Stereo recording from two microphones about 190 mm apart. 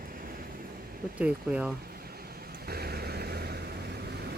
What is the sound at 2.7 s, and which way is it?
Vehicle, 55° right (ahead or behind).